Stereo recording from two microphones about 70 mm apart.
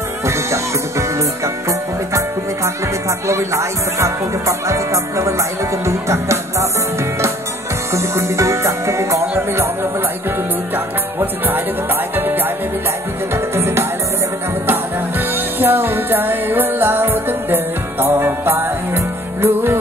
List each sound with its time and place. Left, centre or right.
0.3 s music: right
7.9 s music: right
11.1 s music: right